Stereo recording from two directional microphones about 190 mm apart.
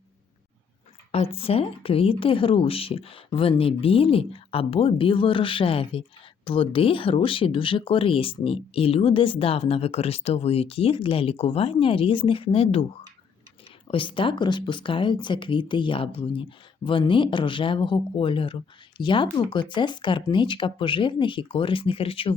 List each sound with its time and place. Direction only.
1.1 s speech: 30° left (ahead or behind)
13.8 s speech: 25° left (ahead or behind)